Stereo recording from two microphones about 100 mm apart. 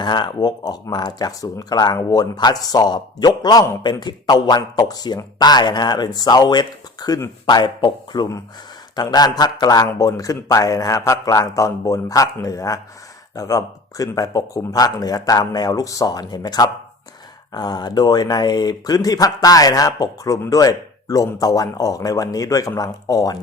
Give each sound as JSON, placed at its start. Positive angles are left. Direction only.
{"t": 0.0, "sound": "a man's voice", "side_deg": 50}